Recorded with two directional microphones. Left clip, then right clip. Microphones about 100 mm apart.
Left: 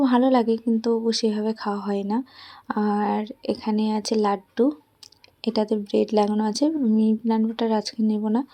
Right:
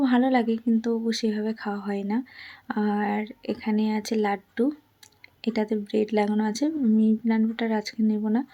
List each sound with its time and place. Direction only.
0.0 s speech: 30° left (ahead or behind)